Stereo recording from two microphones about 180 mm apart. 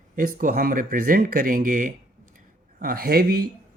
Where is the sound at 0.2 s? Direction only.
50° right (ahead or behind).